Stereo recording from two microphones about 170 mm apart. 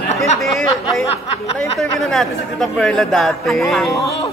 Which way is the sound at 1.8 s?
Centre (ahead or behind).